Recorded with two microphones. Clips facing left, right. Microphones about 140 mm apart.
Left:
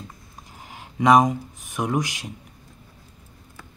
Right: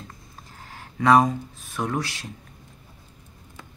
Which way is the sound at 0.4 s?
15° left (ahead or behind).